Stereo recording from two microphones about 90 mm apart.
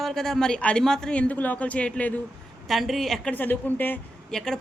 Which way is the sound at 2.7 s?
Centre (ahead or behind).